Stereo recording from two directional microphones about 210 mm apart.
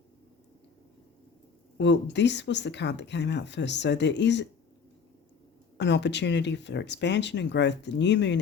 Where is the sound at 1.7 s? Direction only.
55° left (ahead or behind).